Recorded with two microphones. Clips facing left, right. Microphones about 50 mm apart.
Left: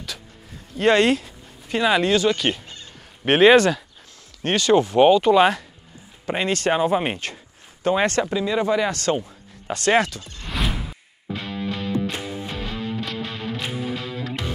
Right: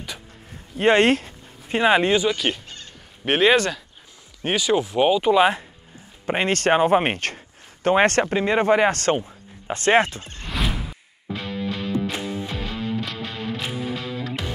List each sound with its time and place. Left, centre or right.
0.7 s speech: right
1.0 s speech: right
2.2 s speech: centre
6.2 s speech: right
9.2 s speech: right
10.4 s music: centre
13.0 s music: centre